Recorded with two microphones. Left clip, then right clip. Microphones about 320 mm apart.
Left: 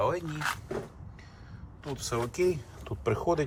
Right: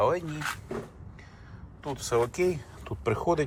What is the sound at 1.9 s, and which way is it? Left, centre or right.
Speech, centre.